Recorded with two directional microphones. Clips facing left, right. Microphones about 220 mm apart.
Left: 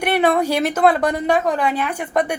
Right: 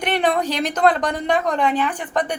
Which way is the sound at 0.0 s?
10° left (ahead or behind).